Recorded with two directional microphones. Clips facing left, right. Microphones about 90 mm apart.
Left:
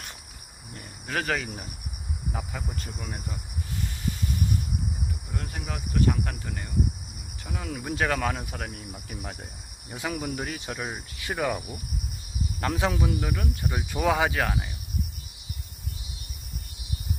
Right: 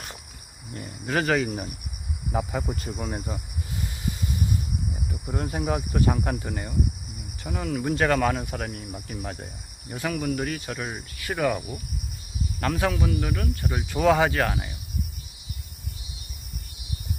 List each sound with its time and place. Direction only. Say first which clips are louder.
0.7 s cricket: right 5 dB; 5° right (ahead or behind)
2.3 s speech: right 10 dB; 15° right (ahead or behind)
2.9 s cricket: right 6 dB; 20° right (ahead or behind)
5.3 s cricket: right 12 dB; 20° right (ahead or behind)
7.4 s cricket: right 6 dB; centre (ahead or behind)
9.9 s insect: right 4 dB; 15° left (ahead or behind)
12.5 s speech: right 2 dB; 20° left (ahead or behind)
13.1 s insect: right 2 dB; 10° left (ahead or behind)
13.7 s cricket: right 4 dB; 5° left (ahead or behind)